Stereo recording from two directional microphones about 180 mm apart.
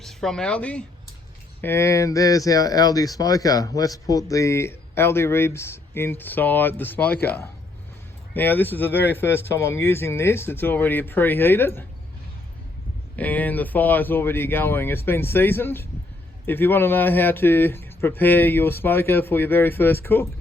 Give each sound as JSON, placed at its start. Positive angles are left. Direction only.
{"t": 0.0, "sound": "speech", "side_deg": 0}
{"t": 13.1, "sound": "speech", "side_deg": 10}